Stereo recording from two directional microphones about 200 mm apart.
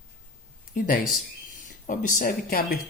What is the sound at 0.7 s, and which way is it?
Speech, 45° left (ahead or behind).